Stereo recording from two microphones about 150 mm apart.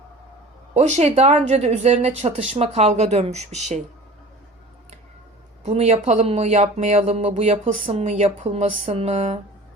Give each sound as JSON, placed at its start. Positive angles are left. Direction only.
{"t": 0.7, "sound": "speech", "side_deg": -50}
{"t": 5.6, "sound": "speech", "side_deg": -45}